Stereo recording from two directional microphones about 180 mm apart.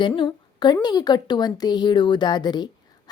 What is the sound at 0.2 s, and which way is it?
A woman's voice, 25° left (ahead or behind).